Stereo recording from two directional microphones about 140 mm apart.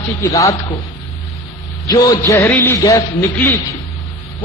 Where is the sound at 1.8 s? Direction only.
25° left (ahead or behind).